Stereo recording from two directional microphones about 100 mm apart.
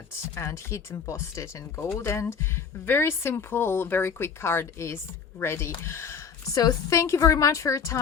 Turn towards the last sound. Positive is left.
turn(degrees=30)  # may be behind; listen again after turning